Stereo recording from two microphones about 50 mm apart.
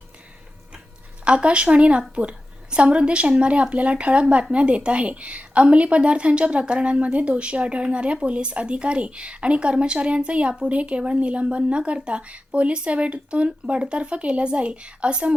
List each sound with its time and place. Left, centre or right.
1.2 s a woman's voice: right